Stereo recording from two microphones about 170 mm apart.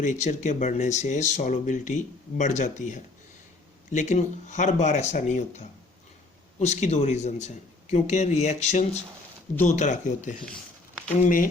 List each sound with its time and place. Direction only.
0.0 s speech: 45° left (ahead or behind)